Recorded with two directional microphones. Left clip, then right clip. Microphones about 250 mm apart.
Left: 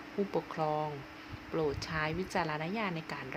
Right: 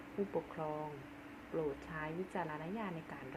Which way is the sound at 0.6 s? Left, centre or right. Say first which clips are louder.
Left 9 dB; left.